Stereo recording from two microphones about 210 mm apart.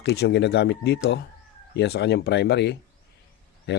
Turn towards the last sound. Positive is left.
turn(degrees=55)  # may be behind; listen again after turning